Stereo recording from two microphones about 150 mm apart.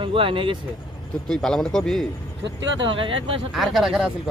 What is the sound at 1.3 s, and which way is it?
Speech, 5° left (ahead or behind).